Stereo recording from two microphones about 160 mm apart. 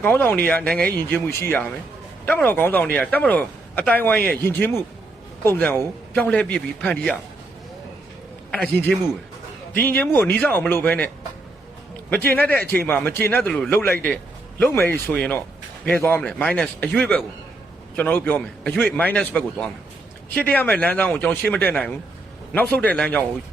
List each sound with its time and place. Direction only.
0.0 s speech: 10° left (ahead or behind)
8.4 s speech: 10° left (ahead or behind)
12.1 s speech: 10° left (ahead or behind)